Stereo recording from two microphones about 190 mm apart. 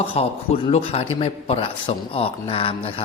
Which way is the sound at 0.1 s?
30° left (ahead or behind).